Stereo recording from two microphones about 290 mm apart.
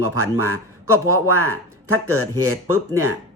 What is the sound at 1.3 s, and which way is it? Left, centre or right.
Speech, right.